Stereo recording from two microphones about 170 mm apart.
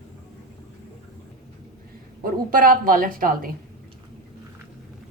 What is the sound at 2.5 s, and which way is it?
Speech, 55° right (ahead or behind).